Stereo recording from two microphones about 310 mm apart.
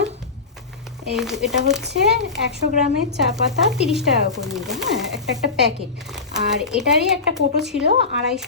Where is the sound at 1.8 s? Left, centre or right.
Right.